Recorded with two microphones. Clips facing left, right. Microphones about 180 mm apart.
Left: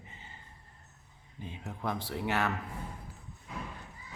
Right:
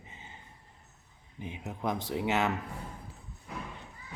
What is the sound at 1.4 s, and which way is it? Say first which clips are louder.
A man's voice: right 3 dB; 20° right (ahead or behind).